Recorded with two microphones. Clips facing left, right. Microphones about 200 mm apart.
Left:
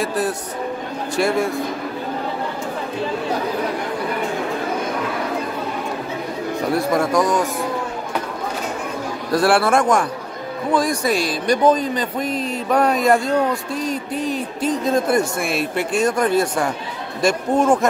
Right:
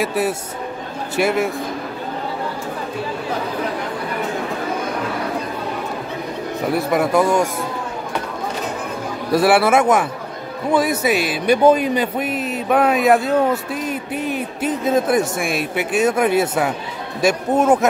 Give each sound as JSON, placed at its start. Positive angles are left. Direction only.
{"t": 1.1, "sound": "a man's voice", "side_deg": -5}
{"t": 6.7, "sound": "a man's voice", "side_deg": -5}
{"t": 9.3, "sound": "a man's voice", "side_deg": -5}
{"t": 13.8, "sound": "music", "side_deg": -60}
{"t": 14.7, "sound": "a man's voice", "side_deg": -5}